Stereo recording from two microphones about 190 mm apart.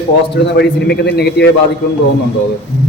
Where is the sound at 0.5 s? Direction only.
60° left (ahead or behind).